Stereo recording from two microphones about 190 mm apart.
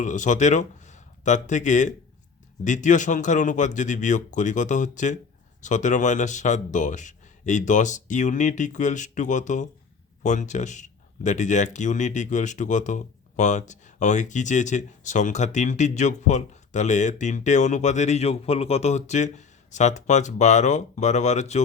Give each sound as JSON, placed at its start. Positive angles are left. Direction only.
{"t": 0.0, "sound": "speech", "side_deg": 40}